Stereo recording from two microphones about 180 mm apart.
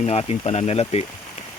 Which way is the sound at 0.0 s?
35° left (ahead or behind).